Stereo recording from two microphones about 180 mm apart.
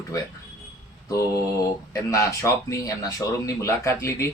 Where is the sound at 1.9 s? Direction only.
15° left (ahead or behind).